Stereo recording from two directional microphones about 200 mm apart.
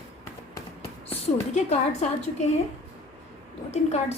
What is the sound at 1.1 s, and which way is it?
A woman's voice, 30° left (ahead or behind).